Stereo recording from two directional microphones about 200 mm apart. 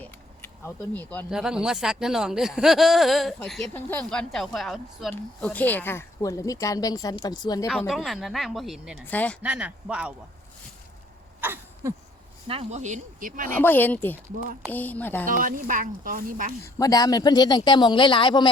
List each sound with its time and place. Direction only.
0.0 s a sound: 10° left (ahead or behind)
1.3 s speech: 5° right (ahead or behind); by 7.7 s 20° left (ahead or behind)
7.7 s speech: centre (ahead or behind)
9.4 s speech: 5° right (ahead or behind)
11.3 s a sound: 10° right (ahead or behind)
12.5 s speech: 30° right (ahead or behind)
13.6 s speech: 10° left (ahead or behind)
15.3 s speech: 45° right (ahead or behind)
16.7 s speech: 20° left (ahead or behind)